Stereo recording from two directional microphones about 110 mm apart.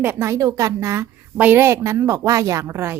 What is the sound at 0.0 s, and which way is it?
A woman's voice, 20° right (ahead or behind).